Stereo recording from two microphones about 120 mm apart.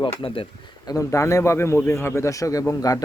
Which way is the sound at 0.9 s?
25° left (ahead or behind).